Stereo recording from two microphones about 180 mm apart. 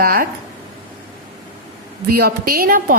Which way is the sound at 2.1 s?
60° right (ahead or behind).